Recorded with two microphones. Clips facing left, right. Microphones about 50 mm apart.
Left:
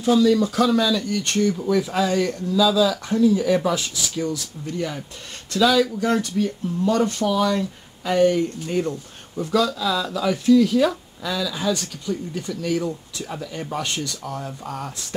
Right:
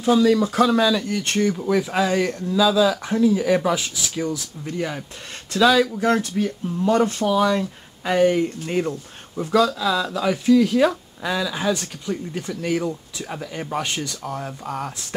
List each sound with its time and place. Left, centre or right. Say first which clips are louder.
0.1 s speech: even; centre
9.4 s speech: right 2 dB; centre
11.2 s speech: right 1 dB; right